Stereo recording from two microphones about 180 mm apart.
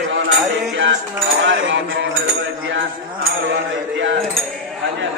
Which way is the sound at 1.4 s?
90° right.